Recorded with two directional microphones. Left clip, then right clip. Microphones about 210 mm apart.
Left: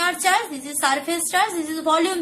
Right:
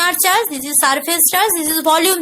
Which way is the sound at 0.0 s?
50° right (ahead or behind).